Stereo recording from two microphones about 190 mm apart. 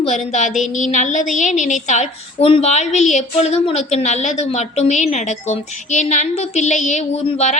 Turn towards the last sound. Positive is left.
turn(degrees=35)  # may be behind; listen again after turning